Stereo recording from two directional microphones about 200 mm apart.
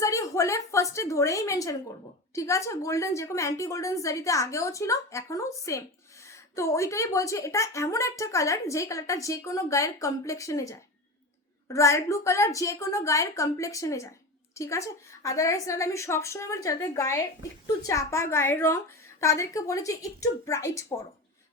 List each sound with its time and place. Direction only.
0.0 s a woman's voice: 15° left (ahead or behind)